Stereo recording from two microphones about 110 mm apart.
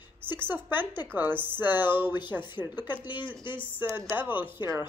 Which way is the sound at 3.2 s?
45° left (ahead or behind).